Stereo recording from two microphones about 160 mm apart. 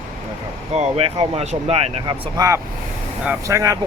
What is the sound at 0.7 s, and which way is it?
Speech, 40° right (ahead or behind).